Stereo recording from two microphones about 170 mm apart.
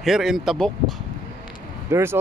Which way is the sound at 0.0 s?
Centre (ahead or behind).